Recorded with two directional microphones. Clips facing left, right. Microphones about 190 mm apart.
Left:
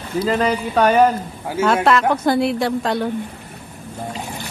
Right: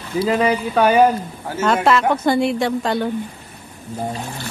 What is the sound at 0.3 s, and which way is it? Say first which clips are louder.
Speech: right 1 dB; 5° right (ahead or behind).